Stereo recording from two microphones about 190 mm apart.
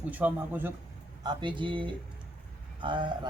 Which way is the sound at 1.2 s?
25° right (ahead or behind).